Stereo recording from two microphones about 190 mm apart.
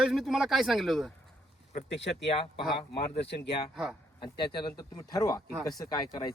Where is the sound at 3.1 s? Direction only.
60° left (ahead or behind).